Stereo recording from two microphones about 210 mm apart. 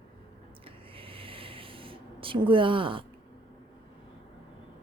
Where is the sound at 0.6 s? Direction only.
25° right (ahead or behind).